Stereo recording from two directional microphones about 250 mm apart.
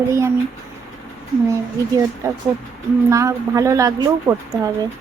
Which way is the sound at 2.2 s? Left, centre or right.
Centre.